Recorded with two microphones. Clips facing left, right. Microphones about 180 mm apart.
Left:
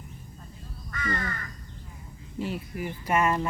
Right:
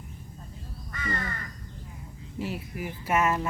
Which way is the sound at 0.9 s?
25° right (ahead or behind).